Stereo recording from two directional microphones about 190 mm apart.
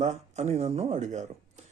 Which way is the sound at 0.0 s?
35° right (ahead or behind).